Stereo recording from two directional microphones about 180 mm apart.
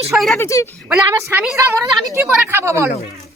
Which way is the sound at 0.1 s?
Centre (ahead or behind).